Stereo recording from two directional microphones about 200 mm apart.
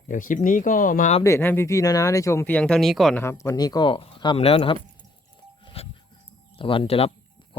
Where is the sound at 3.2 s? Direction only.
15° left (ahead or behind).